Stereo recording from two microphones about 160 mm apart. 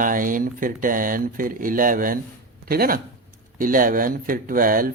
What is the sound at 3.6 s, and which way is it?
Mantra, 60° right (ahead or behind).